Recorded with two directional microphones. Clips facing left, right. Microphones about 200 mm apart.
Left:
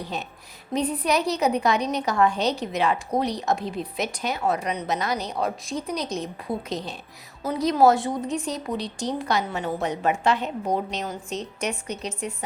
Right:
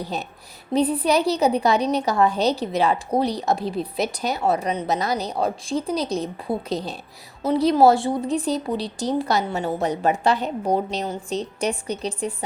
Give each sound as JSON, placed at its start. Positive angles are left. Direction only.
{"t": 0.0, "sound": "a woman's voice", "side_deg": -35}